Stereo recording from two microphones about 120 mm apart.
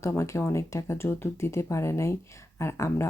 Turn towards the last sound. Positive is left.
turn(degrees=25)  # may be behind; listen again after turning